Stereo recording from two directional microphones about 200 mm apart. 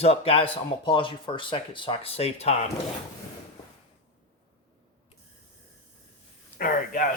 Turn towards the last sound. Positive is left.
turn(degrees=45)  # may be behind; listen again after turning